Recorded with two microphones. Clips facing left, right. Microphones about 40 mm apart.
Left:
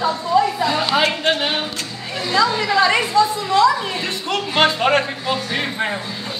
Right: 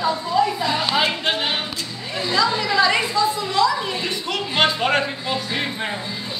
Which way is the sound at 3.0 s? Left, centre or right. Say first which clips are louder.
Left 4 dB; left.